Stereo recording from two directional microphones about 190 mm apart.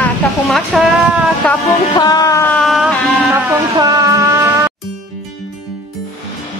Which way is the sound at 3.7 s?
15° right (ahead or behind).